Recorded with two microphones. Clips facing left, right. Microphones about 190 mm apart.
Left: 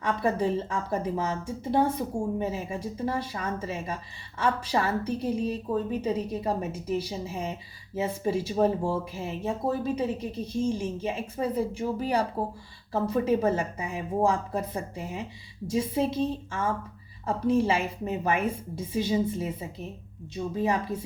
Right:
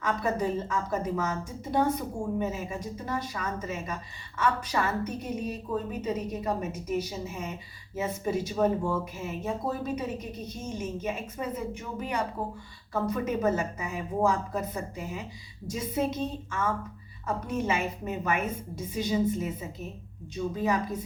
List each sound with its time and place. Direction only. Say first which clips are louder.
0.0 s a woman's voice: left 2 dB; 30° left (ahead or behind)